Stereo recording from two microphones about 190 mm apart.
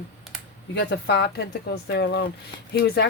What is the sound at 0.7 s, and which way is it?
Speech, 60° left (ahead or behind).